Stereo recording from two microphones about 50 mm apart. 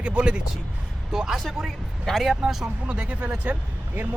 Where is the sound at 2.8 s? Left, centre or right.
Right.